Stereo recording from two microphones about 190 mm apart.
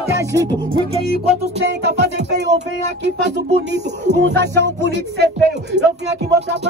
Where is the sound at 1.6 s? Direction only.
60° right (ahead or behind).